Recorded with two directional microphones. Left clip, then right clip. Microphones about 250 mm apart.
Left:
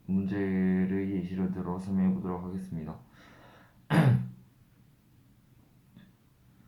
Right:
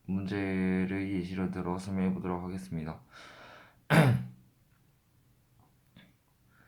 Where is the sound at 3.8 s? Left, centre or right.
Right.